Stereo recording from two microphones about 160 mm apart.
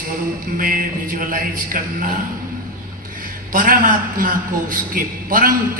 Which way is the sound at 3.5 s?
60° right (ahead or behind).